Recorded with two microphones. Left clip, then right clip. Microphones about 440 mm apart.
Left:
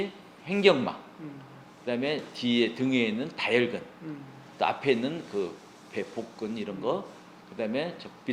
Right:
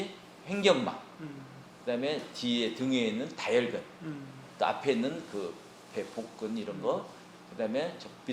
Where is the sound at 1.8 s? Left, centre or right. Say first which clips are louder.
Left 2 dB; left.